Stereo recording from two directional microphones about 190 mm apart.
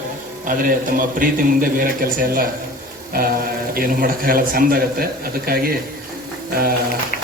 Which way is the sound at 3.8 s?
50° right (ahead or behind).